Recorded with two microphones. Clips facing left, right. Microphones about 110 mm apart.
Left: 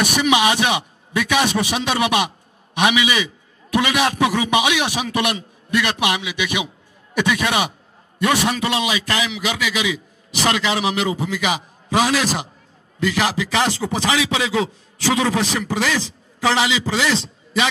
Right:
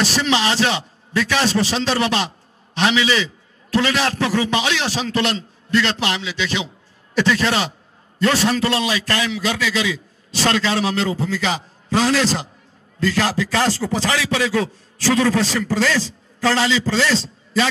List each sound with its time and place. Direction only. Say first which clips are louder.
0.0 s a man's voice: left 2 dB; 15° left (ahead or behind)